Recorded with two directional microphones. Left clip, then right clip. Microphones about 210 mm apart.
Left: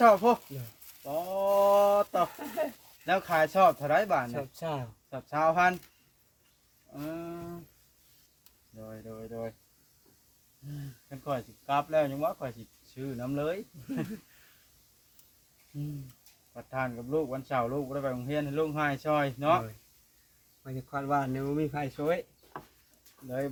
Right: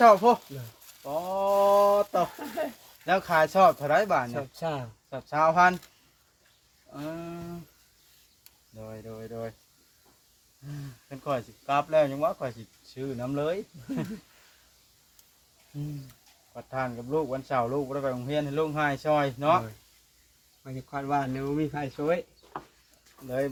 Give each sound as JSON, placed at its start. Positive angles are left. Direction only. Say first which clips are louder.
{"t": 0.0, "sound": "speech", "louder": "right 4 dB", "side_deg": -20}
{"t": 1.0, "sound": "a sound", "louder": "right 2 dB", "side_deg": -20}
{"t": 2.4, "sound": "speech", "louder": "right 1 dB", "side_deg": 15}
{"t": 3.1, "sound": "speech", "louder": "right 3 dB", "side_deg": -20}
{"t": 4.4, "sound": "speech", "louder": "right 3 dB", "side_deg": 15}
{"t": 5.1, "sound": "speech", "louder": "right 4 dB", "side_deg": -20}
{"t": 6.9, "sound": "a sound", "louder": "right 2 dB", "side_deg": -15}
{"t": 8.8, "sound": "speech", "louder": "right 3 dB", "side_deg": -20}
{"t": 11.1, "sound": "speech", "louder": "right 4 dB", "side_deg": -25}
{"t": 16.6, "sound": "speech", "louder": "right 2 dB", "side_deg": -20}
{"t": 20.7, "sound": "speech", "louder": "right 1 dB", "side_deg": 15}